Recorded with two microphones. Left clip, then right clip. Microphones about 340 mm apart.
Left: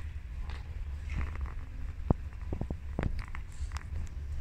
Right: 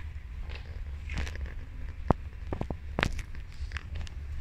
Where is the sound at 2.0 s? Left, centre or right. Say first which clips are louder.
Right 6 dB; right.